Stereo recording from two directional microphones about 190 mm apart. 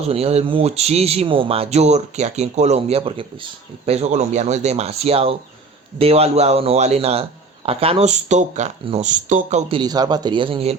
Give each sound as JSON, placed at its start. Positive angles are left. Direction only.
{"t": 0.1, "sound": "speech", "side_deg": -30}